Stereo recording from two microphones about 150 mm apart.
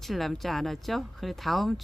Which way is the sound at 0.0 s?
Centre (ahead or behind).